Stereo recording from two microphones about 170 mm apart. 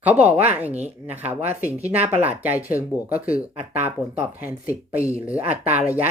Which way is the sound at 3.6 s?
10° right (ahead or behind).